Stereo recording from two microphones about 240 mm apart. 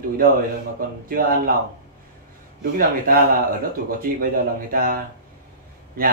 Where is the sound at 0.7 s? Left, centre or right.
Right.